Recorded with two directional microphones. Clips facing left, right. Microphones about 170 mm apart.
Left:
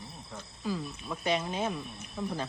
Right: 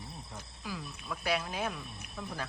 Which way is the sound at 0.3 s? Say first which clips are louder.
Left 8 dB; 10° right (ahead or behind).